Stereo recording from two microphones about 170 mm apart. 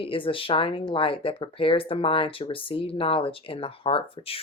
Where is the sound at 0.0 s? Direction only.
30° left (ahead or behind).